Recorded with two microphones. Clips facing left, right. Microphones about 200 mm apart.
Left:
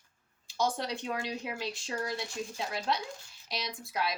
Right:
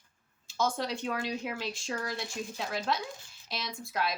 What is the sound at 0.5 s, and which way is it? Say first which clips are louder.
Speech: right 1 dB; 15° left (ahead or behind).